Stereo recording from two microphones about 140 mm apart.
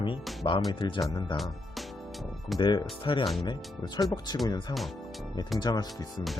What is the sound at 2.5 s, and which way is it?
Speech, 30° left (ahead or behind).